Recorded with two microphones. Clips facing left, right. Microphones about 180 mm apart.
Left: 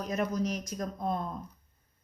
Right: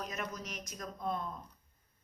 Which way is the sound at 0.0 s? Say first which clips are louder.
Left 10 dB; 35° left (ahead or behind).